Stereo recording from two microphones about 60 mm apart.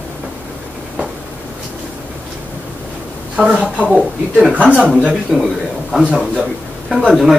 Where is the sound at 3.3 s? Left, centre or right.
Centre.